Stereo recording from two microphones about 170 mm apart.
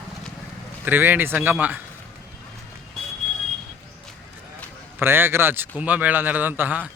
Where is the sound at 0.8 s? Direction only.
10° right (ahead or behind).